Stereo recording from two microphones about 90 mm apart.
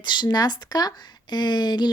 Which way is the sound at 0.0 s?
55° left (ahead or behind).